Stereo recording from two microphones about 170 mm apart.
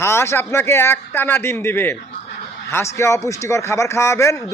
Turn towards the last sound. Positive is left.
turn(degrees=15)  # may be behind; listen again after turning